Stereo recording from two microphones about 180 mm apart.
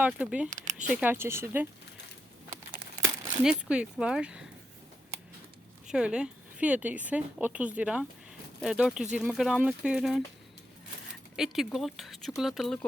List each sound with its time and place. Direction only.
0.0 s speech: 5° right (ahead or behind)
0.5 s a sound: 45° right (ahead or behind)
0.8 s speech: 5° right (ahead or behind)
3.4 s speech: 5° right (ahead or behind)
5.9 s speech: 5° right (ahead or behind)
11.3 s speech: centre (ahead or behind)